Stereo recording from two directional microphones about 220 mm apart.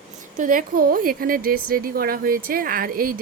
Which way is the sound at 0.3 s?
40° right (ahead or behind).